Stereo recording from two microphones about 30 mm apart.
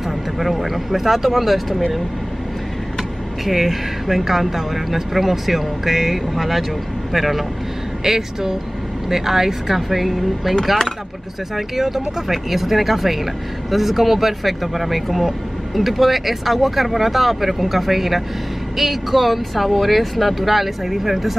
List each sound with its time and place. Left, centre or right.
0.0 s speech: centre
3.4 s speech: centre
8.0 s speech: centre
11.5 s speech: centre